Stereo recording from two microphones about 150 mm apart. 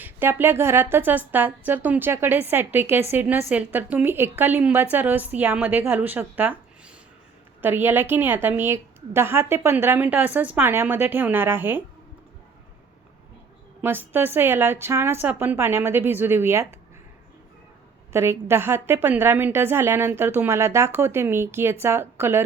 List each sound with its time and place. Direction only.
0.0 s a woman's voice: 15° right (ahead or behind)
13.8 s a woman's voice: 15° right (ahead or behind)
18.1 s a woman's voice: 15° right (ahead or behind)